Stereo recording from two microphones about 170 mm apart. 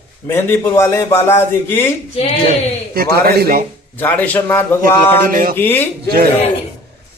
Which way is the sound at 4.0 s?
10° left (ahead or behind).